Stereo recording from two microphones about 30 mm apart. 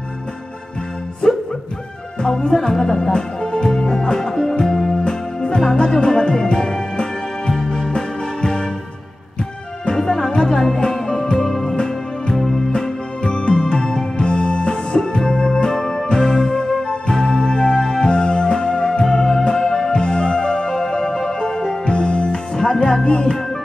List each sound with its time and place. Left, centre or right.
2.1 s music: left
9.8 s music: left
11.3 s music: centre
11.6 s music: left
16.2 s music: centre
16.5 s music: left